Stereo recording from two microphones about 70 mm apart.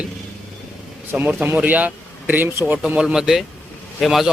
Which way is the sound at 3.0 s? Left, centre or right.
Centre.